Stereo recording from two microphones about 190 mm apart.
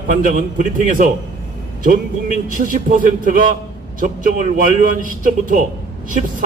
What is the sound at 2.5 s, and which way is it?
A man's voice, 45° right (ahead or behind).